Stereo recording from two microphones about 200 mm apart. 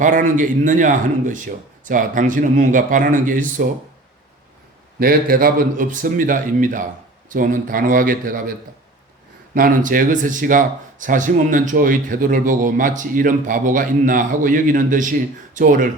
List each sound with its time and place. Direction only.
0.0 s speech: 40° right (ahead or behind)
4.9 s speech: 45° right (ahead or behind)
9.6 s speech: 45° right (ahead or behind)